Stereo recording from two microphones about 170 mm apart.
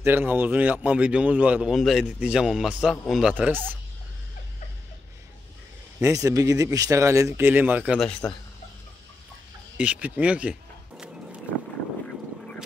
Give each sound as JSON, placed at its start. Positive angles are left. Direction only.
{"t": 0.0, "sound": "a man's voice", "side_deg": -10}
{"t": 5.9, "sound": "speech", "side_deg": -20}
{"t": 9.8, "sound": "speech", "side_deg": -10}